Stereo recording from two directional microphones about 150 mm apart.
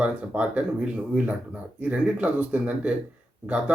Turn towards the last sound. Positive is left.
turn(degrees=-10)  # may be behind; listen again after turning